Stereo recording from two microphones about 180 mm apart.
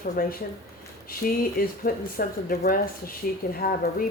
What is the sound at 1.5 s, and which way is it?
Speech, 55° left (ahead or behind).